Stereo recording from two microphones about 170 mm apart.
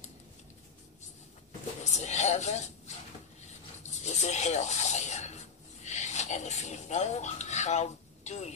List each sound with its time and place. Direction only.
1.9 s speech: 40° left (ahead or behind)
3.9 s rub: 40° left (ahead or behind)